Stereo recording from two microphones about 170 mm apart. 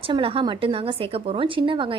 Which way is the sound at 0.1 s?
30° right (ahead or behind).